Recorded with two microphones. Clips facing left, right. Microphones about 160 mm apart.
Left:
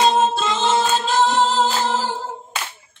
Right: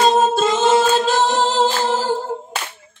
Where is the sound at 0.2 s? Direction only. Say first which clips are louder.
Right 4 dB; 45° right (ahead or behind).